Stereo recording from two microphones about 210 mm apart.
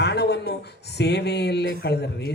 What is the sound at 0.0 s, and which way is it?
Speech, 55° left (ahead or behind).